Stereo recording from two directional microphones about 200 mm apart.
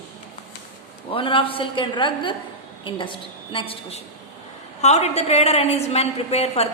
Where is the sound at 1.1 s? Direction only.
25° left (ahead or behind).